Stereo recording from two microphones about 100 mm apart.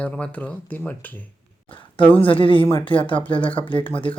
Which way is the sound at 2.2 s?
60° left (ahead or behind).